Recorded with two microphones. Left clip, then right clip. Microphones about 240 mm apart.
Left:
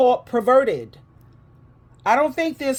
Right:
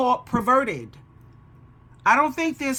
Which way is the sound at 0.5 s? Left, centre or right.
Centre.